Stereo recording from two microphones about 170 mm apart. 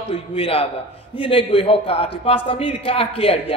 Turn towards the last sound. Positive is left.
turn(degrees=35)  # may be behind; listen again after turning